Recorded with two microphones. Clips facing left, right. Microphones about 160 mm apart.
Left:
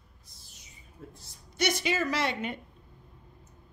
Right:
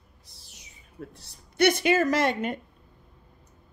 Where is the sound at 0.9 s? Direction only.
70° right (ahead or behind); by 2.6 s 45° right (ahead or behind).